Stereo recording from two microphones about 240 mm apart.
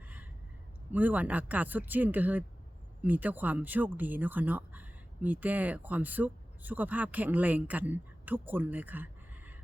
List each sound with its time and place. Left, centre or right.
0.9 s speech: centre